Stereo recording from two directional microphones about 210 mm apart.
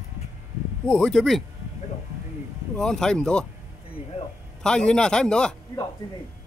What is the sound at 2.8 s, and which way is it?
Speech, 5° left (ahead or behind).